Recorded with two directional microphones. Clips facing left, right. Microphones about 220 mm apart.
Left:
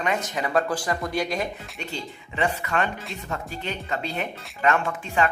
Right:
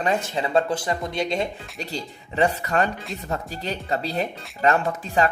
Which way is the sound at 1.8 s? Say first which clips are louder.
Right 3 dB; 35° right (ahead or behind).